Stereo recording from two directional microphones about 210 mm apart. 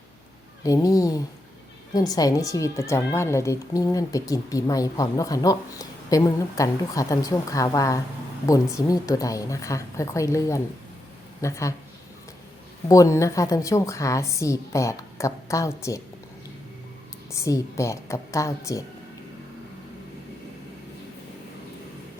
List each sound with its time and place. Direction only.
0.6 s speech: 15° left (ahead or behind)
12.9 s speech: 15° left (ahead or behind)
17.3 s speech: 15° left (ahead or behind)